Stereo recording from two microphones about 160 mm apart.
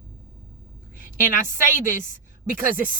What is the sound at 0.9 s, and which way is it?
A woman's voice, 55° left (ahead or behind).